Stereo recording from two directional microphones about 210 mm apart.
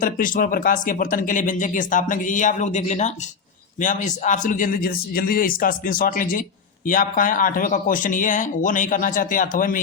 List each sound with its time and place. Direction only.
0.0 s speech: 40° left (ahead or behind)